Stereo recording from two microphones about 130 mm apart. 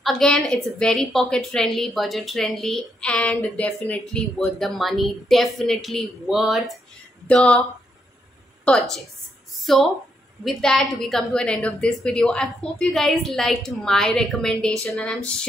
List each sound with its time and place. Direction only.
0.0 s a woman's voice: 5° left (ahead or behind)
8.6 s a woman's voice: 5° left (ahead or behind)